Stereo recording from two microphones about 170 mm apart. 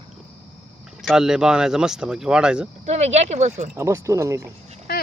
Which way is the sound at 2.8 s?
40° right (ahead or behind).